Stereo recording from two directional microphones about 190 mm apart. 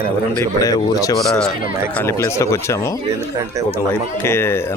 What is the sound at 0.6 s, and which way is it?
Speech, 20° left (ahead or behind).